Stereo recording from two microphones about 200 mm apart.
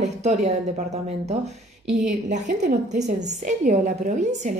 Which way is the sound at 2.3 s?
35° right (ahead or behind).